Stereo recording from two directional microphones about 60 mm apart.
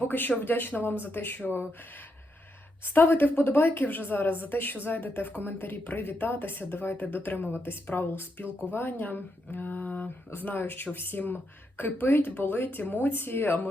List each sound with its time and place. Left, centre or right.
0.0 s a woman's voice: left